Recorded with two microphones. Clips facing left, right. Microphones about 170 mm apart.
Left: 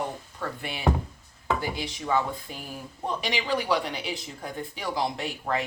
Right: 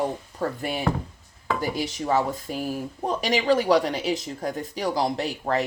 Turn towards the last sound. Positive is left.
turn(degrees=-35)  # may be behind; listen again after turning